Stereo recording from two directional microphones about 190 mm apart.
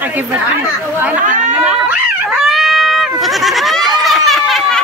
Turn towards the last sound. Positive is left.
turn(degrees=0)  # may be behind; listen again after turning